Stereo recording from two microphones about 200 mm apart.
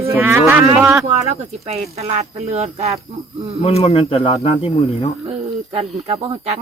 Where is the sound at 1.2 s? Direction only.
30° right (ahead or behind).